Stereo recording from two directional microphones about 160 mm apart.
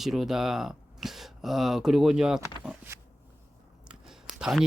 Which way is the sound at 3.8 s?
5° right (ahead or behind).